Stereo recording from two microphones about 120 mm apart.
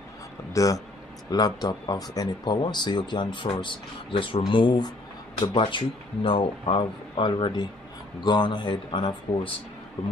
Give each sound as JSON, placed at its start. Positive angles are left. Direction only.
{"t": 0.5, "sound": "speech", "side_deg": 25}